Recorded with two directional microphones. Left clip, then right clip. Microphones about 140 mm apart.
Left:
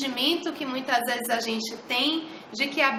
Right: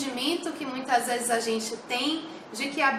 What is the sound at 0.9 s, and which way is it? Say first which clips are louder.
A woman's voice: even; 15° left (ahead or behind).